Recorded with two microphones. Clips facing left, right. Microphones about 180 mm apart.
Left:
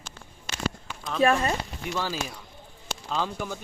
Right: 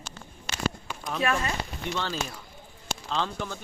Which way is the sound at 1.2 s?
35° left (ahead or behind).